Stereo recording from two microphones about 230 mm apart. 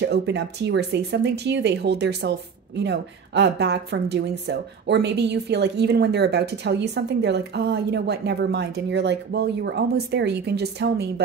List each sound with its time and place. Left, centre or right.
0.0 s speech: right